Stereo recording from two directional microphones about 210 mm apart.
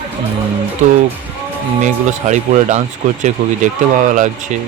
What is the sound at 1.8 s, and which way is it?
Speech, 35° right (ahead or behind).